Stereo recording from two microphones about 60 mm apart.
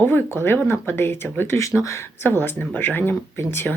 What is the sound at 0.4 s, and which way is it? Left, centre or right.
Speech, left.